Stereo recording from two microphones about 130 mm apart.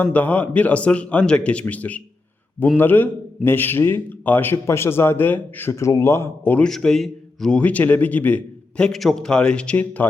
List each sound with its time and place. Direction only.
0.0 s a man's voice: 10° left (ahead or behind)
6.7 s a man's voice: 5° left (ahead or behind)